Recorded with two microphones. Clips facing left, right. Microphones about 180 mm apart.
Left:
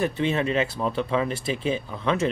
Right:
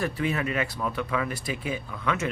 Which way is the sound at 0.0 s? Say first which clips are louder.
Left 4 dB; 25° left (ahead or behind).